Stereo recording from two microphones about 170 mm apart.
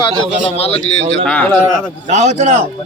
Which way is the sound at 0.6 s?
35° left (ahead or behind).